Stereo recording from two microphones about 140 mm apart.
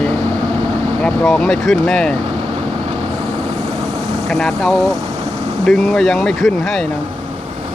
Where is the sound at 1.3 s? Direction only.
Centre (ahead or behind).